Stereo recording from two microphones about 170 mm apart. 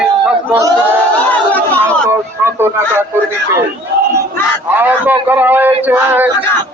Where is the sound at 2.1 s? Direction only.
15° right (ahead or behind).